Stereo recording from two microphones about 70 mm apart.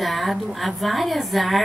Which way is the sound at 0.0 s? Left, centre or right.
Centre.